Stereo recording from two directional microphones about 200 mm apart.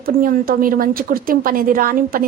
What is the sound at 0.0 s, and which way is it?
A woman's voice, 45° right (ahead or behind).